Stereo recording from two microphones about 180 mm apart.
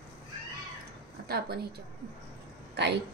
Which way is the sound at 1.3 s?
60° right (ahead or behind).